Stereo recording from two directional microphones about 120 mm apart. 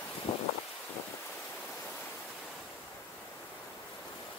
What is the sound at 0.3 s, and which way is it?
Wind, 50° left (ahead or behind).